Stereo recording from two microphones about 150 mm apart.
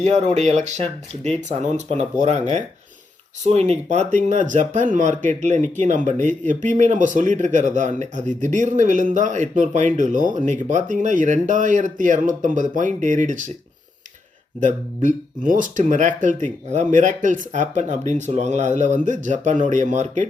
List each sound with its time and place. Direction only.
0.0 s speech: 50° right (ahead or behind)
14.6 s speech: 60° right (ahead or behind)